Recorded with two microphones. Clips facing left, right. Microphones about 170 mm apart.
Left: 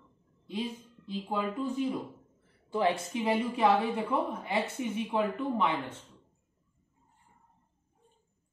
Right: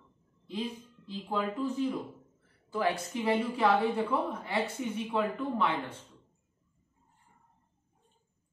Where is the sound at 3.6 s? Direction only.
25° left (ahead or behind).